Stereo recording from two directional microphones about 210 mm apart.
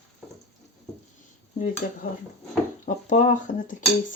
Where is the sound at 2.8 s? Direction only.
35° left (ahead or behind).